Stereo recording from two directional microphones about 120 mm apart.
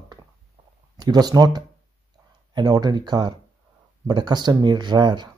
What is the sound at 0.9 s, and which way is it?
Speech, 35° right (ahead or behind).